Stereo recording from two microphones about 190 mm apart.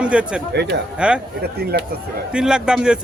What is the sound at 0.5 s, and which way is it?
Speech, 60° right (ahead or behind).